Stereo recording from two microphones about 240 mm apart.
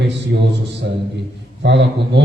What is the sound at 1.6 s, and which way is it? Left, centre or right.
Mantra, right.